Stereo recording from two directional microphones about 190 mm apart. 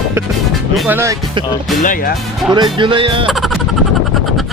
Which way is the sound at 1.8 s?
45° left (ahead or behind).